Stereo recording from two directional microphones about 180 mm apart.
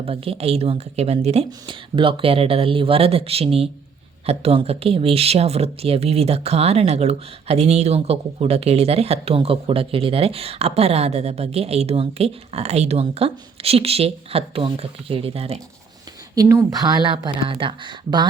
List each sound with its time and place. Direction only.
0.0 s speech: 30° right (ahead or behind)
16.3 s speech: 15° right (ahead or behind)